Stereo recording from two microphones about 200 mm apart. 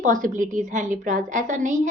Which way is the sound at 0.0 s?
40° right (ahead or behind).